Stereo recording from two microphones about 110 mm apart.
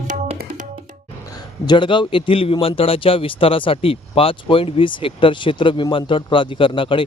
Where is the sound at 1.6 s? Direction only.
45° left (ahead or behind).